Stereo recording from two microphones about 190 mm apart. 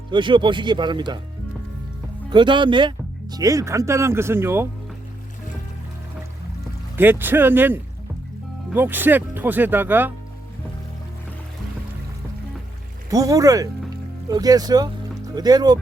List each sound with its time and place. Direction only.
0.1 s speech: 25° right (ahead or behind)
2.3 s speech: 25° right (ahead or behind)
6.9 s speech: 10° right (ahead or behind)
13.1 s speech: 20° right (ahead or behind)